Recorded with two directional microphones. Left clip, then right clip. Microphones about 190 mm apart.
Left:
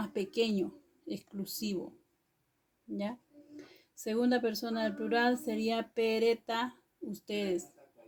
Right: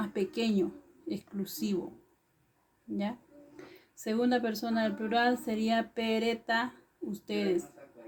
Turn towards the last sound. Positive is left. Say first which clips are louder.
# right 3 dB
turn(degrees=50)  # may be behind; listen again after turning